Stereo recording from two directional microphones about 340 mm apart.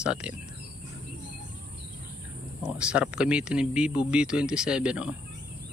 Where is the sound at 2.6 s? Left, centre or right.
Centre.